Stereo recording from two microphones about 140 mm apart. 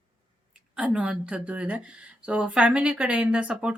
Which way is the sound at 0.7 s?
5° right (ahead or behind).